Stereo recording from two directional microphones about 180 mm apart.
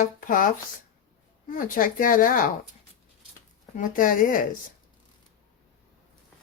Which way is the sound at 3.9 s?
50° left (ahead or behind).